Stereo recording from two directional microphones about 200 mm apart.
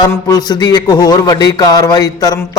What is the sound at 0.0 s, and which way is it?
Speech, 20° left (ahead or behind).